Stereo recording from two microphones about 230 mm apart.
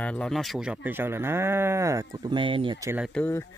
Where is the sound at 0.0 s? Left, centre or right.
Centre.